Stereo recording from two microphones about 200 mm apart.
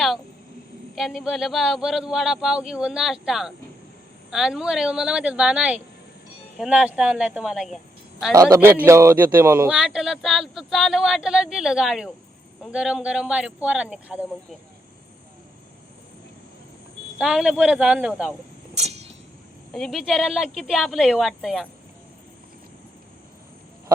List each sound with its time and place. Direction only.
0.9 s a man's voice: centre (ahead or behind)
8.3 s a man's voice: 15° right (ahead or behind)
17.2 s a man's voice: 5° right (ahead or behind)
19.7 s a man's voice: centre (ahead or behind)